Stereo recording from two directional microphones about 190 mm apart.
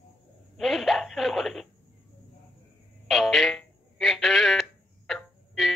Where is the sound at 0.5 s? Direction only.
Centre (ahead or behind).